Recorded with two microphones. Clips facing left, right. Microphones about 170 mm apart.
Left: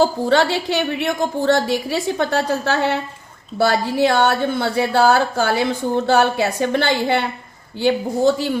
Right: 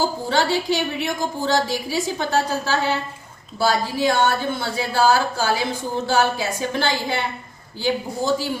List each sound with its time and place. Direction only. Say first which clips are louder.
0.0 s a woman's voice: left 6 dB; 65° left (ahead or behind)